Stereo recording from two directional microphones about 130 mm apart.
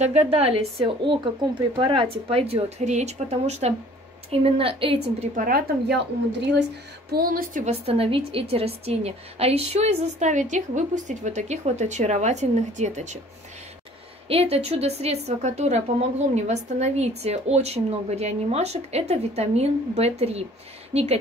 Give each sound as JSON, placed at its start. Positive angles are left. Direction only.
{"t": 0.0, "sound": "a woman's voice", "side_deg": -55}
{"t": 4.3, "sound": "a woman's voice", "side_deg": -45}
{"t": 7.2, "sound": "a woman's voice", "side_deg": -90}
{"t": 7.7, "sound": "a woman's voice", "side_deg": -50}
{"t": 14.3, "sound": "a woman's voice", "side_deg": -50}